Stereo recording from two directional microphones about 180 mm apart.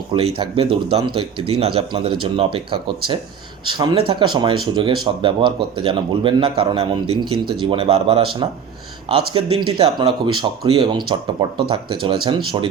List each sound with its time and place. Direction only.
0.1 s speech: 30° right (ahead or behind)